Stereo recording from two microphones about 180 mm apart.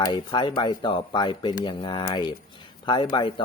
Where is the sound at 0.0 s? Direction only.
25° left (ahead or behind).